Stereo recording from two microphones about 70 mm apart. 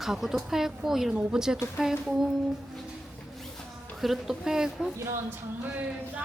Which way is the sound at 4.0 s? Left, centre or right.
Centre.